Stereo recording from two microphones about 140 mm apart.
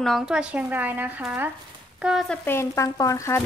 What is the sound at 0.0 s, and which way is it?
Speech, centre (ahead or behind).